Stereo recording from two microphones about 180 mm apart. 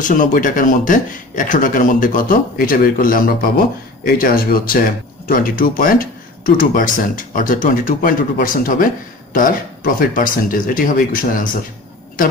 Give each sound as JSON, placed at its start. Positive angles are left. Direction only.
{"t": 0.0, "sound": "speech", "side_deg": 45}